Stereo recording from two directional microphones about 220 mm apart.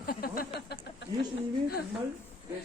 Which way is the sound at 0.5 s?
50° left (ahead or behind).